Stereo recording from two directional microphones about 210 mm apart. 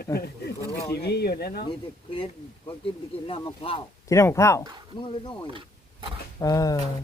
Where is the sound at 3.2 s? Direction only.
25° left (ahead or behind).